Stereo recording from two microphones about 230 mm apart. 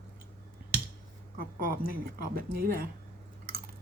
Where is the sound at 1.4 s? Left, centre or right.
Right.